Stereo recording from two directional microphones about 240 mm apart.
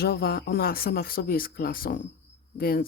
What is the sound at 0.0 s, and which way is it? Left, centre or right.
Speech, left.